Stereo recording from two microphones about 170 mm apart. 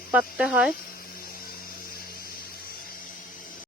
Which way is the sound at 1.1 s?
60° left (ahead or behind).